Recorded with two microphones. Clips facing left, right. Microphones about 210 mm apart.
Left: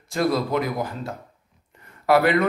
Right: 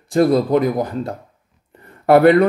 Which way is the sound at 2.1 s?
50° right (ahead or behind).